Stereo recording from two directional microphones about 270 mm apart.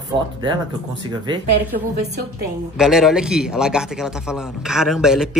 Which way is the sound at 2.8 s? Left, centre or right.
Centre.